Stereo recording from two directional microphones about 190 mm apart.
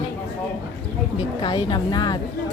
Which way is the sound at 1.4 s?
25° left (ahead or behind).